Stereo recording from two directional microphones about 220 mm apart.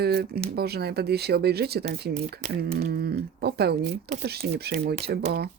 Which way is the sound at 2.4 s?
30° right (ahead or behind).